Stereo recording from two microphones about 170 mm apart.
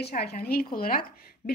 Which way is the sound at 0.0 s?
70° left (ahead or behind).